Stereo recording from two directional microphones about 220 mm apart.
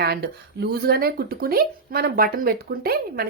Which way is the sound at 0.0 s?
45° right (ahead or behind).